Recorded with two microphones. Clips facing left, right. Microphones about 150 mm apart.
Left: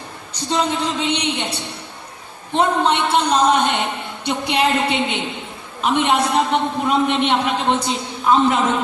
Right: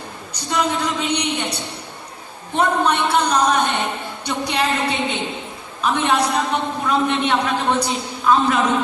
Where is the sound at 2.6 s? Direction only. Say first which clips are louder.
Left 1 dB; 25° left (ahead or behind).